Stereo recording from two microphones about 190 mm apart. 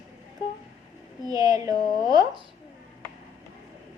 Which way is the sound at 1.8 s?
20° left (ahead or behind).